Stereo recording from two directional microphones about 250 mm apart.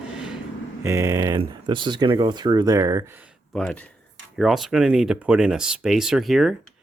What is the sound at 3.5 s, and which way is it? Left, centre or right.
Speech, centre.